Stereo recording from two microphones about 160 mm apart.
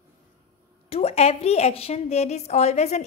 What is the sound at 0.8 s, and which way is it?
A woman's voice, 40° left (ahead or behind).